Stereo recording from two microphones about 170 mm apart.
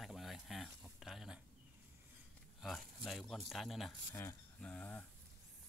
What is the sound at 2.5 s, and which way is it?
Speech, centre (ahead or behind).